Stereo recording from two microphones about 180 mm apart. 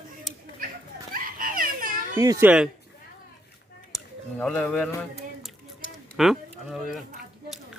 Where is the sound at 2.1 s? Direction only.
20° right (ahead or behind).